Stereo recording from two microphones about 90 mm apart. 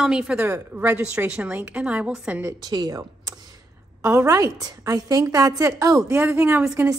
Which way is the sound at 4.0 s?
35° right (ahead or behind).